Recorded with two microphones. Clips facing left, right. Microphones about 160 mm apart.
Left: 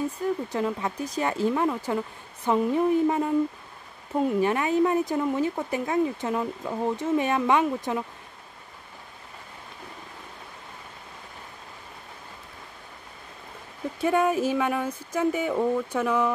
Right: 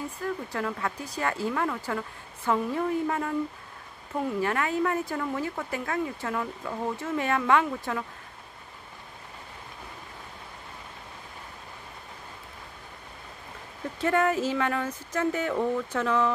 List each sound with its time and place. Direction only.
0.2 s speech: 20° left (ahead or behind)
14.0 s speech: 15° left (ahead or behind)